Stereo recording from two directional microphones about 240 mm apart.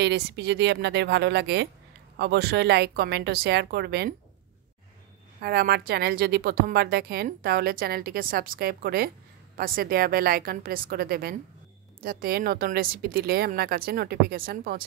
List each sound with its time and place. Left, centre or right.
0.0 s speech: right
5.4 s a woman's voice: right